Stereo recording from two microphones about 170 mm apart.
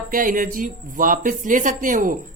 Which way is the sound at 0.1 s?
50° right (ahead or behind).